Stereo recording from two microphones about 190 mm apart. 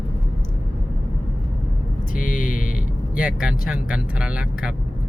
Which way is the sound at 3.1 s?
5° right (ahead or behind).